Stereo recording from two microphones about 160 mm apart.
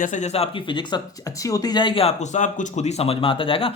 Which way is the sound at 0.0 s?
50° left (ahead or behind).